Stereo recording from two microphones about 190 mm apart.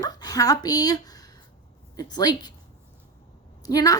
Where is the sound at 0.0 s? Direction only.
20° left (ahead or behind).